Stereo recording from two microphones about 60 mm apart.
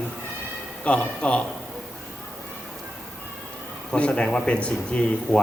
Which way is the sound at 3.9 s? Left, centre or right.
Centre.